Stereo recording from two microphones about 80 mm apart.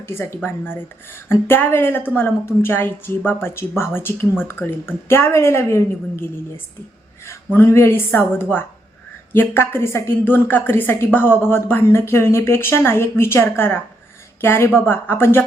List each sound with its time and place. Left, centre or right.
0.0 s a woman's voice: left